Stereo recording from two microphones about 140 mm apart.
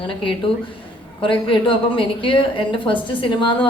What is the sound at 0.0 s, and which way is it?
A woman's voice, 35° left (ahead or behind).